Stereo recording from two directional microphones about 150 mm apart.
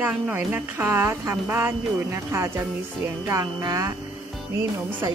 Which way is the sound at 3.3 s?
20° right (ahead or behind).